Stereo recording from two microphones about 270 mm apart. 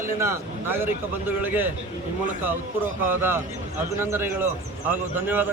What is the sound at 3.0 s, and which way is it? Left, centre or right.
A man's voice, centre.